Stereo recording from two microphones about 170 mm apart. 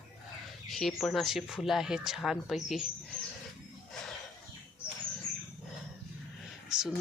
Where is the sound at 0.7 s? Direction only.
Centre (ahead or behind).